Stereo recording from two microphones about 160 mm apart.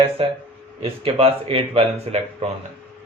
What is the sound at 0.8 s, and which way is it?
Speech, 35° right (ahead or behind).